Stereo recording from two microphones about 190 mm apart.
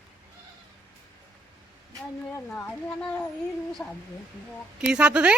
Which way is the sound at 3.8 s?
5° left (ahead or behind).